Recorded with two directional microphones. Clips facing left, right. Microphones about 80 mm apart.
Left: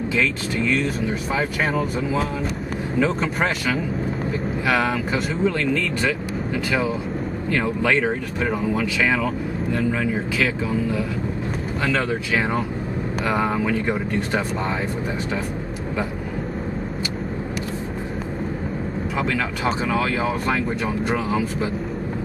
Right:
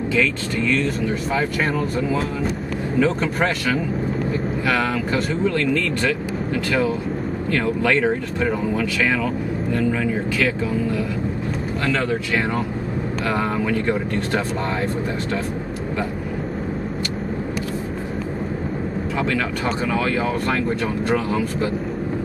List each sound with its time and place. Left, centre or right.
0.1 s speech: centre
3.0 s speech: centre
11.8 s speech: centre
14.6 s speech: centre
19.1 s speech: centre